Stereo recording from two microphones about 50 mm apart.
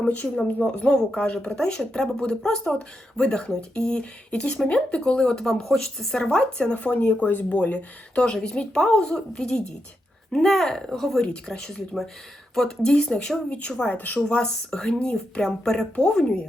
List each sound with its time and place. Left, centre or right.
0.8 s speech: centre
10.3 s speech: centre
11.2 s speech: centre
13.9 s speech: left
14.3 s speech: left